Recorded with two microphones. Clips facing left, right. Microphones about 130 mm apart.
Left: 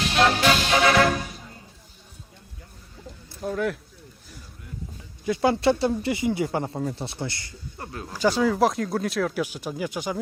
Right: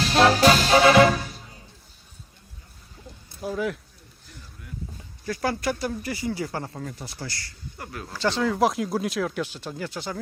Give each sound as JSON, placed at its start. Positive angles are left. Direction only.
{"t": 0.0, "sound": "music", "side_deg": -35}
{"t": 3.4, "sound": "speech", "side_deg": -5}
{"t": 5.2, "sound": "speech", "side_deg": 20}
{"t": 8.1, "sound": "speech", "side_deg": 10}
{"t": 9.4, "sound": "speech", "side_deg": 10}